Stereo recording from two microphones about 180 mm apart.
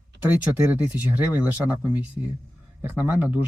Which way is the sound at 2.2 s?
20° right (ahead or behind).